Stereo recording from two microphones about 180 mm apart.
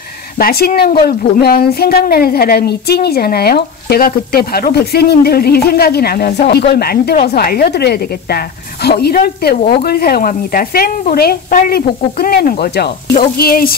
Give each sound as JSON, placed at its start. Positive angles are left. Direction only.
{"t": 0.4, "sound": "speech", "side_deg": 55}